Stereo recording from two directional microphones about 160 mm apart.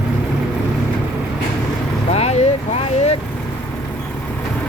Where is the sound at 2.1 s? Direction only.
40° left (ahead or behind).